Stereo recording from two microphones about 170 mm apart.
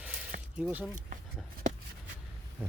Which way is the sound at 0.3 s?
55° right (ahead or behind).